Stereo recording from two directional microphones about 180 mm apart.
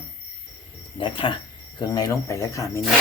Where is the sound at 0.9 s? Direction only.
30° left (ahead or behind).